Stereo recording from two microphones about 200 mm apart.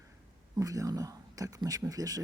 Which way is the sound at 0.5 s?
15° right (ahead or behind).